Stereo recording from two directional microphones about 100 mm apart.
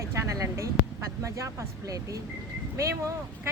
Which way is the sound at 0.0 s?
30° right (ahead or behind).